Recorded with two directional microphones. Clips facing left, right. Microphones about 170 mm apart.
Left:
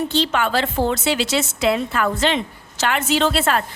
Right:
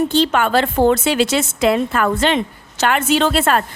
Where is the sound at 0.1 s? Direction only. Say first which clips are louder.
Right 4 dB; 50° right (ahead or behind).